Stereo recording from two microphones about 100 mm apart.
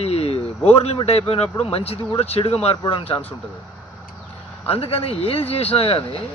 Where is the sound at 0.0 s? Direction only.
90° left.